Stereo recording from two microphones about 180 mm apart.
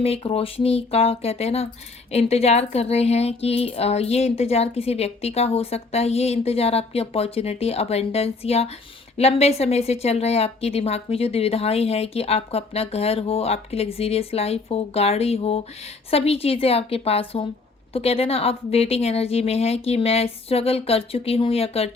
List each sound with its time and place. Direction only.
0.0 s speech: 30° left (ahead or behind)